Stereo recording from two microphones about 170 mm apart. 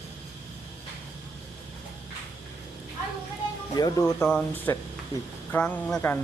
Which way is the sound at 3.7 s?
20° left (ahead or behind).